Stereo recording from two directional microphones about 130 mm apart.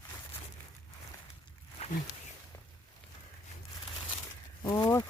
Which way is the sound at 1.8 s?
55° left (ahead or behind).